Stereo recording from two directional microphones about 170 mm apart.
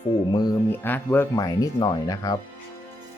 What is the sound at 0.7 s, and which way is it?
Speech, 10° left (ahead or behind).